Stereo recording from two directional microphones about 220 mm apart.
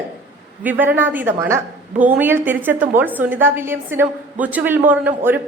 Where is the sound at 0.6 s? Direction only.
10° right (ahead or behind).